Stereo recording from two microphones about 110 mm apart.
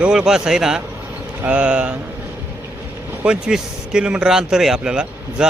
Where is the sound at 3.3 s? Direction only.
5° right (ahead or behind).